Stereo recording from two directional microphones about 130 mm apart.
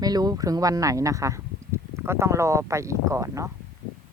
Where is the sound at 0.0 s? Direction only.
30° right (ahead or behind).